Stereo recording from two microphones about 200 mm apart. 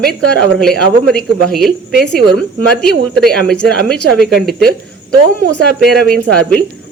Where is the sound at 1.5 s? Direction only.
Centre (ahead or behind).